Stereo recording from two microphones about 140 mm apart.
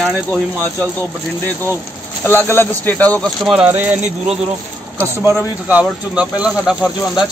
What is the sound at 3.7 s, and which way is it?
Speech, 10° right (ahead or behind).